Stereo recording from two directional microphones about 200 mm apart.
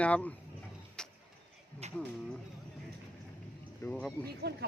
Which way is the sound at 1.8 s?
30° right (ahead or behind).